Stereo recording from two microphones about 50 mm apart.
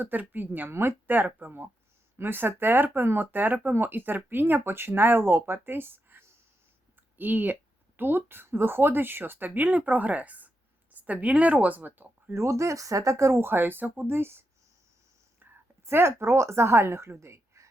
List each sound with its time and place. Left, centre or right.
0.0 s speech: right
0.7 s speech: right
6.9 s a sound: right
7.9 s speech: right
12.3 s speech: right
13.4 s speech: right
14.1 s speech: right
15.4 s whispering: right
15.9 s a woman's voice: right